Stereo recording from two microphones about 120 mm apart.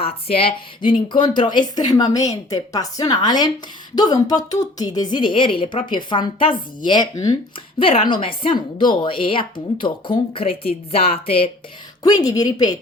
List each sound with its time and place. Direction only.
0.0 s speech: 50° left (ahead or behind)
12.0 s speech: 30° left (ahead or behind)